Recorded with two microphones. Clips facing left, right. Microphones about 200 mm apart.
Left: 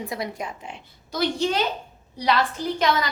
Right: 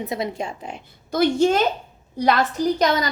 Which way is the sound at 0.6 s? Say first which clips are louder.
Right 6 dB; 45° right (ahead or behind).